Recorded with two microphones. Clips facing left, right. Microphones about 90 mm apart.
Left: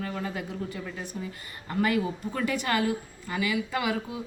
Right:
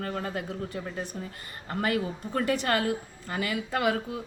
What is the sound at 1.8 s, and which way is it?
A woman's voice, 35° right (ahead or behind).